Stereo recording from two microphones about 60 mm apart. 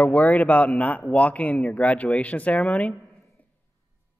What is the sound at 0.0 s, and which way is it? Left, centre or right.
A man's voice, left.